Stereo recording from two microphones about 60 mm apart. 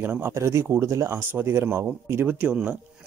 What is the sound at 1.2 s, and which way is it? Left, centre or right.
Speech, right.